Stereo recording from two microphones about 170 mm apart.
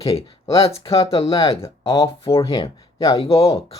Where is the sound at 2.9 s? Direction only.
20° left (ahead or behind).